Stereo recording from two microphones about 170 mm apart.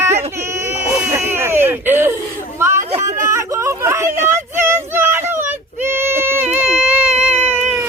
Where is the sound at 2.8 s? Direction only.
45° right (ahead or behind).